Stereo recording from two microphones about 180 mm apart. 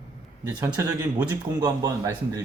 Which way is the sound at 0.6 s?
20° right (ahead or behind).